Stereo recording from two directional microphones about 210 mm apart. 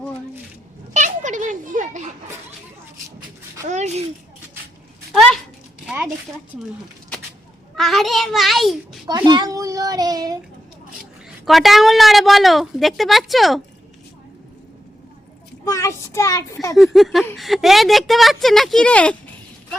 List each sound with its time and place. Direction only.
0.9 s a child's voice: 35° right (ahead or behind)
3.7 s a child's voice: 35° right (ahead or behind)
5.8 s a sound: 5° right (ahead or behind)
7.8 s a woman's voice: centre (ahead or behind)
9.0 s a child's voice: 20° right (ahead or behind)
11.4 s a woman's voice: centre (ahead or behind)
15.6 s a child's voice: 15° left (ahead or behind)
16.7 s a woman's voice: centre (ahead or behind)